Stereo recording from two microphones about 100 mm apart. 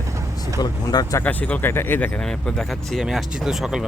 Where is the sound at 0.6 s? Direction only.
40° left (ahead or behind).